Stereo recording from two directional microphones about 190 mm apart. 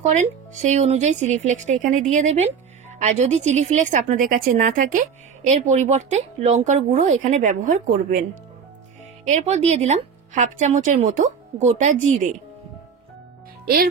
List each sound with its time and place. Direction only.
0.0 s a woman's voice: 40° right (ahead or behind)